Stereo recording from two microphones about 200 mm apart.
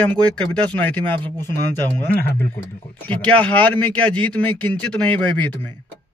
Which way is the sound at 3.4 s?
10° left (ahead or behind).